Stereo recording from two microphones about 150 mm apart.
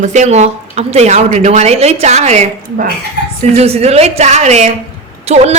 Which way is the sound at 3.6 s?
45° right (ahead or behind).